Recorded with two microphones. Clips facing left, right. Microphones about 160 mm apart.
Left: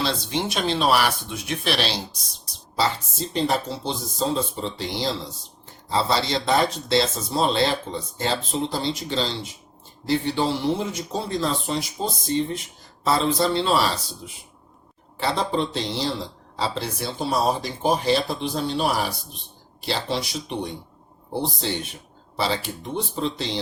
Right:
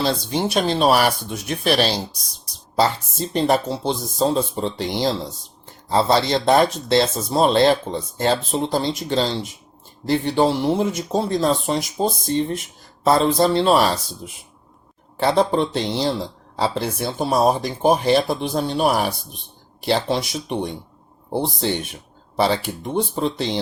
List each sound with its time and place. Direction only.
0.0 s speech: 40° right (ahead or behind)
2.7 s speech: 55° right (ahead or behind)
15.2 s speech: 55° right (ahead or behind)
21.6 s speech: 55° right (ahead or behind)